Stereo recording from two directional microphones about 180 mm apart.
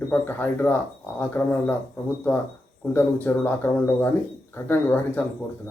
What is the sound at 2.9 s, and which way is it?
Speech, 10° left (ahead or behind).